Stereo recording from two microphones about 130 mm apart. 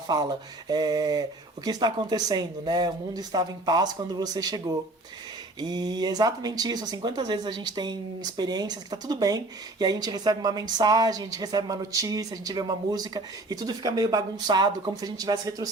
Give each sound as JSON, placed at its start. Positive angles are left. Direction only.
{"t": 0.1, "sound": "speech", "side_deg": -30}